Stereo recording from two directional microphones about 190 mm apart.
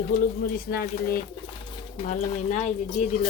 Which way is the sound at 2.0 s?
40° left (ahead or behind).